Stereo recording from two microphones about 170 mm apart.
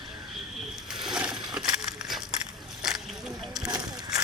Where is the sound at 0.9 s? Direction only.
Centre (ahead or behind).